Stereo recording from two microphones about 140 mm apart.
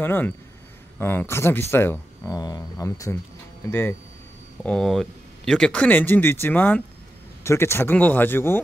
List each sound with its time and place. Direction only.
0.0 s speech: 15° left (ahead or behind)
4.6 s speech: 5° left (ahead or behind)